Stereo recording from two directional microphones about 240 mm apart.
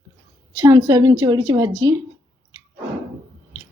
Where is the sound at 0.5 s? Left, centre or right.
Centre.